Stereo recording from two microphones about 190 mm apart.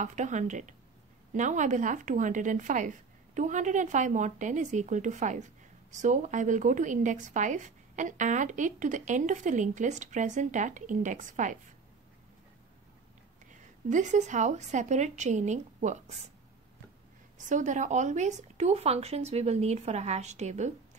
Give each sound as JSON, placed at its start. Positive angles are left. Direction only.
{"t": 0.0, "sound": "speech", "side_deg": -40}
{"t": 13.5, "sound": "a woman's voice", "side_deg": -40}
{"t": 17.5, "sound": "speech", "side_deg": -40}